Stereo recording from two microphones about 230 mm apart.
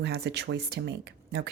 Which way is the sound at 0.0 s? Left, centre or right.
Right.